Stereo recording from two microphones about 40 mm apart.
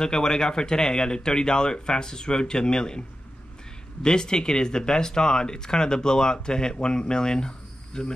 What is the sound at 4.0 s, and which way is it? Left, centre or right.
Speech, centre.